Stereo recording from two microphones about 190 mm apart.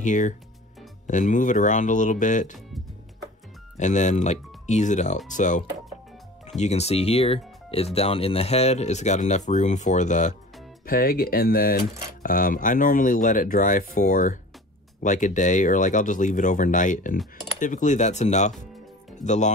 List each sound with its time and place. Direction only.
0.0 s speech: 40° left (ahead or behind)
3.7 s speech: 40° left (ahead or behind)
10.9 s speech: 50° left (ahead or behind)